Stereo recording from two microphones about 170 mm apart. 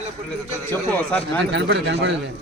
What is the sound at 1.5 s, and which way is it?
Speech, 90° right.